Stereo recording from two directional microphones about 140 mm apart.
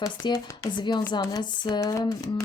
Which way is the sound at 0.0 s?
25° left (ahead or behind).